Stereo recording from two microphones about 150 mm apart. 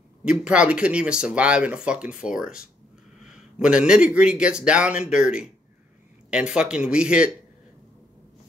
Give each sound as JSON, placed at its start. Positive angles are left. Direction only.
{"t": 0.2, "sound": "speech", "side_deg": -5}